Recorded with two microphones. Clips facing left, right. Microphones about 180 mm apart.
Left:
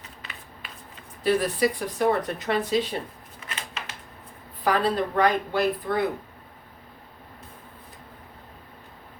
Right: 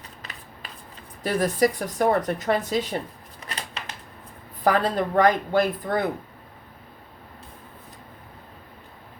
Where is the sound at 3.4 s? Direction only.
35° right (ahead or behind).